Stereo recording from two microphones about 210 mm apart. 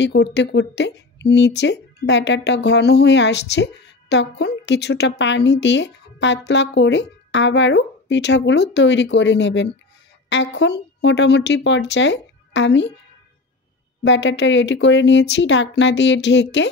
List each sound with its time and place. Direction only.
0.0 s speech: 55° left (ahead or behind)
14.0 s speech: 60° left (ahead or behind)